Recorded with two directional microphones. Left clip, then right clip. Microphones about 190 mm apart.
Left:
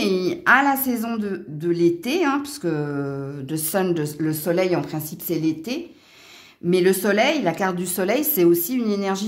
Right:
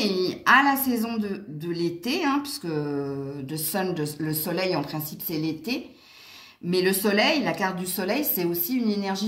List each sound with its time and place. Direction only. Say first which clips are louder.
0.0 s a man's voice: left 3 dB; 45° left (ahead or behind)